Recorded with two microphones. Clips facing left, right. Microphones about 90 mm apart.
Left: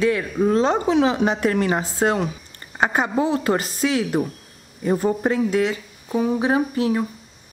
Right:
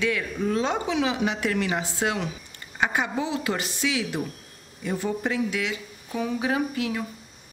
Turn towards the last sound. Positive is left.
turn(degrees=35)  # may be behind; listen again after turning